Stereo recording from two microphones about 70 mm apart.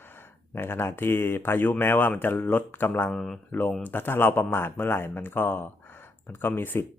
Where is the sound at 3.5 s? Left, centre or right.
Left.